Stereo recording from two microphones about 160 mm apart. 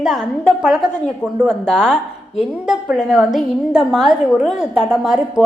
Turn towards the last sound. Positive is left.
turn(degrees=-5)  # may be behind; listen again after turning